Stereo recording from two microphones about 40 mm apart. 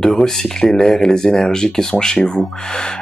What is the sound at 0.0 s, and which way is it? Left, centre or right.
Speech, centre.